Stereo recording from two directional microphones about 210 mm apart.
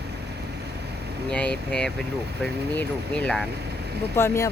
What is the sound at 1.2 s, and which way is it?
Speech, 5° left (ahead or behind).